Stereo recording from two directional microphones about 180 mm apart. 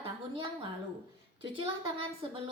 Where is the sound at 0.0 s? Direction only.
30° right (ahead or behind).